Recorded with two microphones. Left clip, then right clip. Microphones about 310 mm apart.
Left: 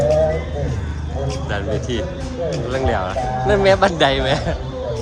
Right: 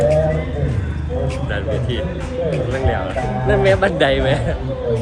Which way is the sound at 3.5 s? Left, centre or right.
Centre.